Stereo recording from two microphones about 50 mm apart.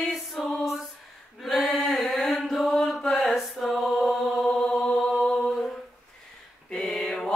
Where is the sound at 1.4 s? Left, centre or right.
Centre.